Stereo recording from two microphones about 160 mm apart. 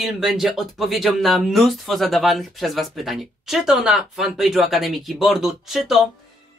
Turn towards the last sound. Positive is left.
turn(degrees=0)  # may be behind; listen again after turning